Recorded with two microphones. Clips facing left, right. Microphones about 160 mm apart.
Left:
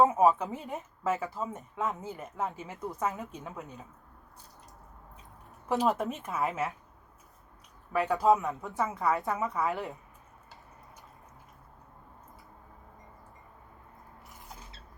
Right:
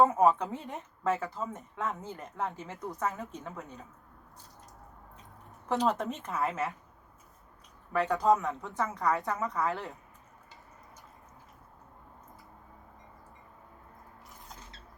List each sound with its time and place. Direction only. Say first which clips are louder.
0.0 s a woman's voice: left 1 dB; 5° left (ahead or behind)
5.6 s a woman's voice: left 1 dB; 5° left (ahead or behind)
7.9 s a woman's voice: left 1 dB; 5° left (ahead or behind)
9.6 s speech: left 1 dB; 20° left (ahead or behind)